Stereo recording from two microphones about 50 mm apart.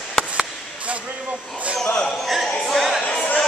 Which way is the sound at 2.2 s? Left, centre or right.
Centre.